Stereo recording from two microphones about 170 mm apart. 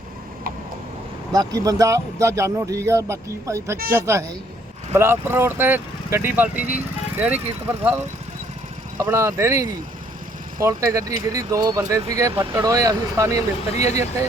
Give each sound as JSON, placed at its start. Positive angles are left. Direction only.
{"t": 1.3, "sound": "speech", "side_deg": -20}
{"t": 9.0, "sound": "speech", "side_deg": -15}